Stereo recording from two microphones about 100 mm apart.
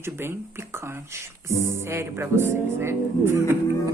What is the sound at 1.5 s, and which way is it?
A man's voice, 25° right (ahead or behind).